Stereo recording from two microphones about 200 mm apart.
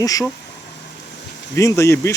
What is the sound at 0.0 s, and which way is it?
Speech, 15° left (ahead or behind).